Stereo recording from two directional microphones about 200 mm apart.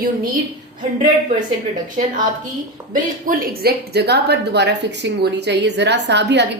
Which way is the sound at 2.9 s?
45° right (ahead or behind).